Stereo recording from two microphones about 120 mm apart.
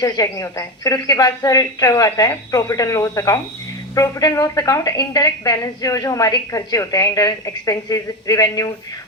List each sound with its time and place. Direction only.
0.0 s a woman's voice: 30° left (ahead or behind)